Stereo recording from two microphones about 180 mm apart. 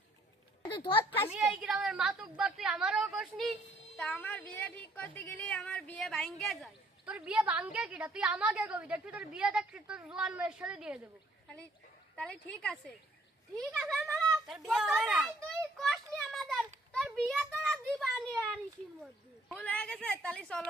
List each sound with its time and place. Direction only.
0.7 s speech: 25° left (ahead or behind)
1.3 s a woman's voice: centre (ahead or behind)
3.9 s a woman's voice: 10° left (ahead or behind)
12.1 s a woman's voice: 5° left (ahead or behind)
13.6 s a sound: centre (ahead or behind)
19.5 s a woman's voice: 5° left (ahead or behind)